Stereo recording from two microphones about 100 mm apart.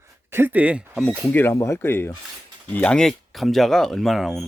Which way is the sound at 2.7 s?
15° left (ahead or behind).